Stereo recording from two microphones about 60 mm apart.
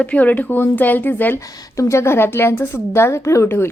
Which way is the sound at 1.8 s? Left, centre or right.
Left.